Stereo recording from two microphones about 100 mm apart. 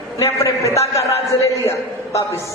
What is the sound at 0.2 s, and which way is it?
A woman's voice, 30° left (ahead or behind).